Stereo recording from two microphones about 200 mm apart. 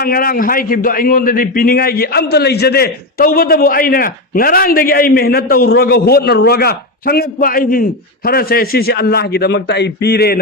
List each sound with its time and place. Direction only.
0.0 s a man's voice: 45° left (ahead or behind)